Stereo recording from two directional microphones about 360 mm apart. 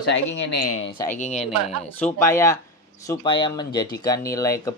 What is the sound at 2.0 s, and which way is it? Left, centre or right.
Speech, centre.